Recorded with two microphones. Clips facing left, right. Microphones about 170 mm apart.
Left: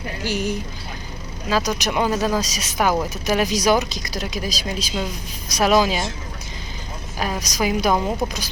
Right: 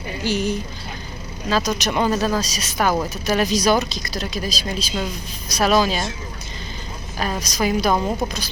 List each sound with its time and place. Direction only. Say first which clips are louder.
0.3 s speech: right 2 dB; 15° left (ahead or behind)
7.2 s speech: right 1 dB; 10° left (ahead or behind)